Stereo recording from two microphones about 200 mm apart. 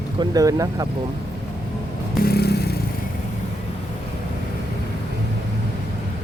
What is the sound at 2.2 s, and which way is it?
Vehicle, 55° left (ahead or behind).